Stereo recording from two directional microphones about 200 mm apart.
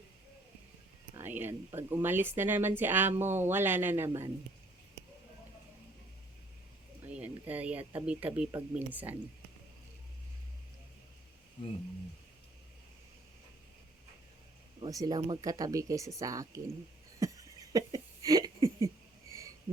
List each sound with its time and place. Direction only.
1.1 s speech: 10° right (ahead or behind)
7.1 s speech: 10° right (ahead or behind)
14.8 s speech: 20° right (ahead or behind)
17.2 s a sound: 15° right (ahead or behind)